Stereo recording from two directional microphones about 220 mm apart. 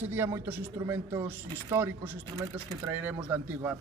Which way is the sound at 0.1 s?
10° right (ahead or behind).